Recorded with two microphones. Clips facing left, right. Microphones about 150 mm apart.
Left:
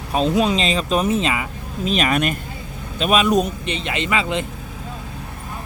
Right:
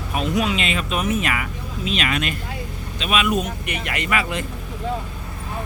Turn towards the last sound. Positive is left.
turn(degrees=20)  # may be behind; listen again after turning